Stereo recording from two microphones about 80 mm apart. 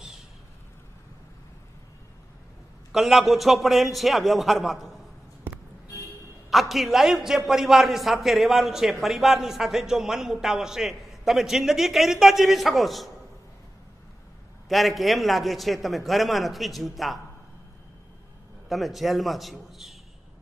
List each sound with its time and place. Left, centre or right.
2.9 s a man's voice: centre
5.5 s music: right
6.5 s a man's voice: centre
14.7 s a man's voice: centre
18.7 s a man's voice: centre